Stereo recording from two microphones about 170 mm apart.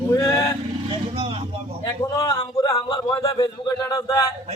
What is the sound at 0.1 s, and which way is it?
Vehicle, 20° left (ahead or behind).